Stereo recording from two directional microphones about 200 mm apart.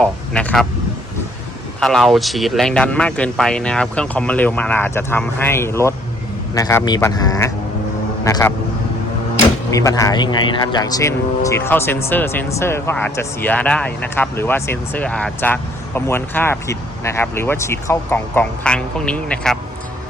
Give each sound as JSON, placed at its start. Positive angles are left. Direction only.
{"t": 0.0, "sound": "speech", "side_deg": 5}
{"t": 1.8, "sound": "speech", "side_deg": 0}
{"t": 9.6, "sound": "speech", "side_deg": 15}